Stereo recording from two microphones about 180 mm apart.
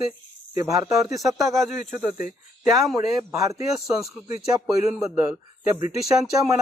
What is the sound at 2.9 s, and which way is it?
Speech, 20° right (ahead or behind).